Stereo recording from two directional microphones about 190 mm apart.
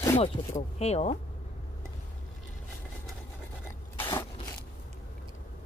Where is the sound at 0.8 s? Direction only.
35° left (ahead or behind).